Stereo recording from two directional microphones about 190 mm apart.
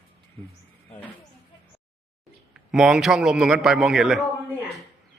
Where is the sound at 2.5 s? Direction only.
5° right (ahead or behind).